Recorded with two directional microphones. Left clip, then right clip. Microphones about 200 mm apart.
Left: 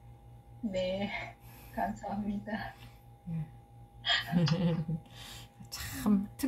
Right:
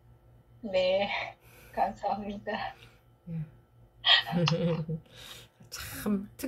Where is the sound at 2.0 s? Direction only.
10° right (ahead or behind).